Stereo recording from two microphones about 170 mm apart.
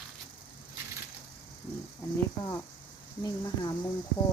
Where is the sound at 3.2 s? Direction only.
25° left (ahead or behind).